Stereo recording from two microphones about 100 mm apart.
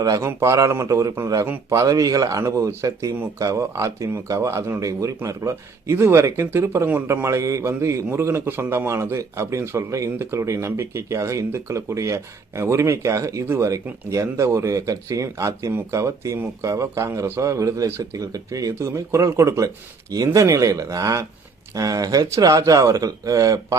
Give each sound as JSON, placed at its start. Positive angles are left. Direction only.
{"t": 0.0, "sound": "speech", "side_deg": -40}
{"t": 0.3, "sound": "a man's voice", "side_deg": -25}